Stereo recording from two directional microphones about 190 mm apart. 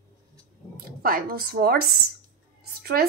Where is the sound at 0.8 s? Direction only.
50° right (ahead or behind).